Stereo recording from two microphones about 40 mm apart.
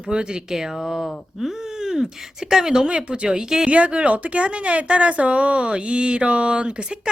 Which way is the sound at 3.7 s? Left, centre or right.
Right.